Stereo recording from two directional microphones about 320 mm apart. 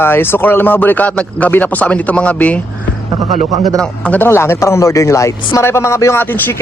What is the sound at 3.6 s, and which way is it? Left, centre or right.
A man's voice, centre.